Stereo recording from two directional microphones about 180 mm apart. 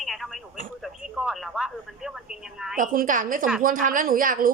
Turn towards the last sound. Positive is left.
turn(degrees=-50)  # may be behind; listen again after turning